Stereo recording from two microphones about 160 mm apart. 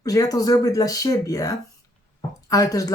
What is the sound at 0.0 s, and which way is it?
Speech, 20° left (ahead or behind).